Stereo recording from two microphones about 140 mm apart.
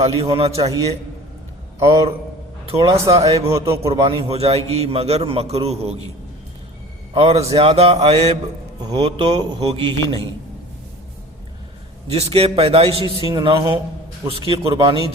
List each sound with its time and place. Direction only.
0.0 s a man's voice: 45° right (ahead or behind)
1.8 s speech: 40° right (ahead or behind)
2.9 s speech: 20° right (ahead or behind)
3.8 s a man's voice: 40° right (ahead or behind)
7.1 s a man's voice: 45° right (ahead or behind)
9.6 s speech: 40° right (ahead or behind)
12.0 s a man's voice: 45° right (ahead or behind)